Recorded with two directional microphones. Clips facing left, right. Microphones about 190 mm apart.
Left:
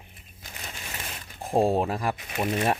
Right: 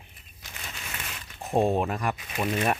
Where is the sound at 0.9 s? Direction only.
35° left (ahead or behind).